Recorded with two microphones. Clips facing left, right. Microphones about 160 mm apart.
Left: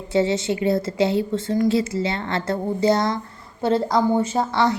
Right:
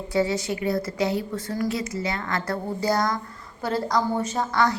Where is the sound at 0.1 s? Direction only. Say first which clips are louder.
Left 4 dB; 25° left (ahead or behind).